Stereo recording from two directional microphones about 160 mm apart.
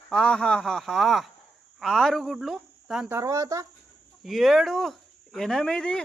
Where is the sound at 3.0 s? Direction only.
15° right (ahead or behind).